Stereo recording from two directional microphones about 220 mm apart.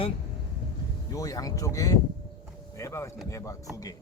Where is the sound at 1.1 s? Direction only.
15° left (ahead or behind).